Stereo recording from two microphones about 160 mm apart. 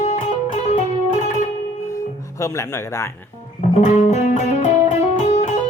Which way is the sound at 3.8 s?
50° left (ahead or behind).